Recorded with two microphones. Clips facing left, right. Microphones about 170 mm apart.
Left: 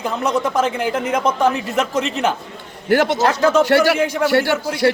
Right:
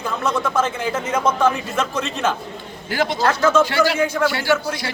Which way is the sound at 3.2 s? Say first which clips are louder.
Left 2 dB; 15° left (ahead or behind).